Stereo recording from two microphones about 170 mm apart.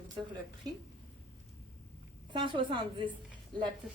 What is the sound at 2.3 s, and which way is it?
Speech, 30° right (ahead or behind).